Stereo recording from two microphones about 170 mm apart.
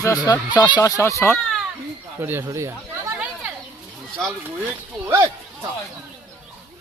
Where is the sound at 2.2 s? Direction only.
15° right (ahead or behind).